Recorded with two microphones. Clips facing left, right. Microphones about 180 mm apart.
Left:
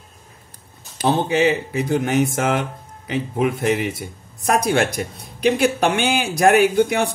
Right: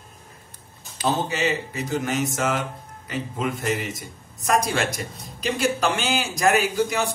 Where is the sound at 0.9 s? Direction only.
55° left (ahead or behind).